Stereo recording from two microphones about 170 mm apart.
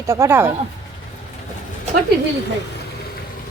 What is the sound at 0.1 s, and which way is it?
Speech, 15° right (ahead or behind).